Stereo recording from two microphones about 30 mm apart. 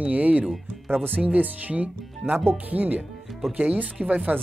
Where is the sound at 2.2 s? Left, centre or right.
Right.